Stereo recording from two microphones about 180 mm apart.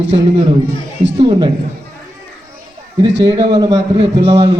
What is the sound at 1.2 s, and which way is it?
Speech, 25° right (ahead or behind).